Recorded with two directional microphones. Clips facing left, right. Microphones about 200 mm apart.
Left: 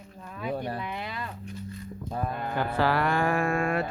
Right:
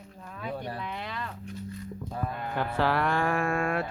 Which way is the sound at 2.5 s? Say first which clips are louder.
Left 1 dB; centre (ahead or behind).